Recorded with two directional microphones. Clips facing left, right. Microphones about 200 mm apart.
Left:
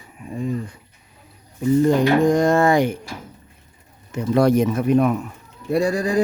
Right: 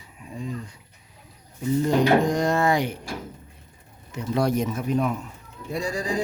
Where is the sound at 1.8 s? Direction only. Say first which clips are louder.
Left 3 dB; 50° left (ahead or behind).